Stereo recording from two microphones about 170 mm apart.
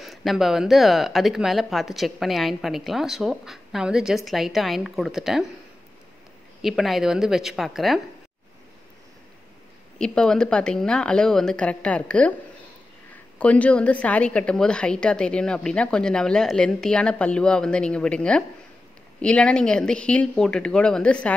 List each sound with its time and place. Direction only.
0.0 s speech: centre (ahead or behind)
6.6 s speech: centre (ahead or behind)
9.9 s speech: 5° left (ahead or behind)
13.4 s speech: 10° left (ahead or behind)